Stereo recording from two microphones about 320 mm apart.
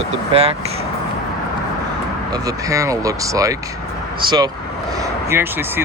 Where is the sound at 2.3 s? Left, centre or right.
Centre.